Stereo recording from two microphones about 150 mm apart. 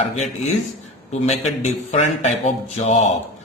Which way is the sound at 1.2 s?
45° left (ahead or behind).